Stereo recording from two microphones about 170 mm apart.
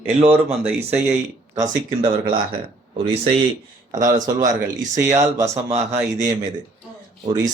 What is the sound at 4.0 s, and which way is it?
Speech, 50° right (ahead or behind).